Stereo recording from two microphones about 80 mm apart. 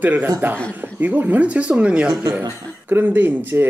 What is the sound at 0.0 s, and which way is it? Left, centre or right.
Speech, right.